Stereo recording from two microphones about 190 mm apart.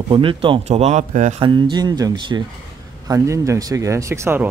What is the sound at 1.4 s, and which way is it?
Speech, 25° right (ahead or behind).